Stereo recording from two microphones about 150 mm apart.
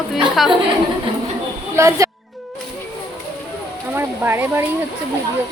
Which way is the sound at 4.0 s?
15° right (ahead or behind).